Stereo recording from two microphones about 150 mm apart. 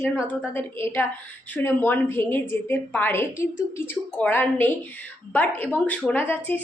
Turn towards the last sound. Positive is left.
turn(degrees=10)  # may be behind; listen again after turning